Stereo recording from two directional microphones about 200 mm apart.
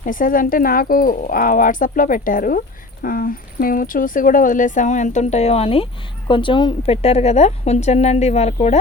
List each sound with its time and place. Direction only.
0.0 s speech: 40° left (ahead or behind)